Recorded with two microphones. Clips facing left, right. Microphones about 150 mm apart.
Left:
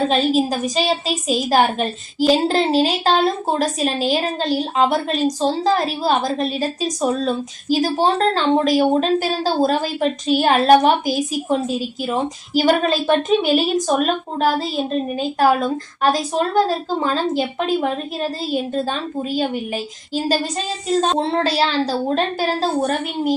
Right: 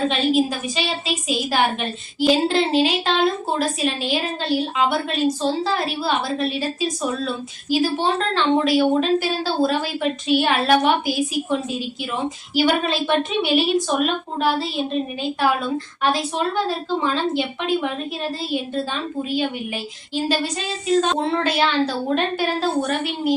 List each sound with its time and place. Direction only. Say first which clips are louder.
0.1 s a woman's voice: left 2 dB; 40° left (ahead or behind)
20.1 s a woman's voice: left 2 dB; 40° left (ahead or behind)